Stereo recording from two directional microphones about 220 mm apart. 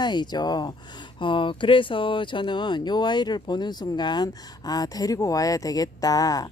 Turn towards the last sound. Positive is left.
turn(degrees=15)  # may be behind; listen again after turning